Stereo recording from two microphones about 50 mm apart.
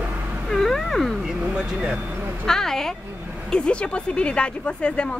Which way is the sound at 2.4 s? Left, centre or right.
Centre.